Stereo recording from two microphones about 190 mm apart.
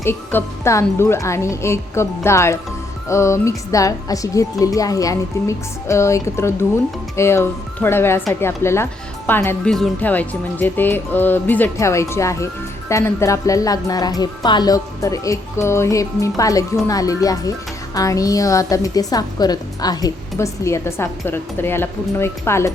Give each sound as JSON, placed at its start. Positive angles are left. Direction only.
{"t": 0.0, "sound": "a woman's voice", "side_deg": 10}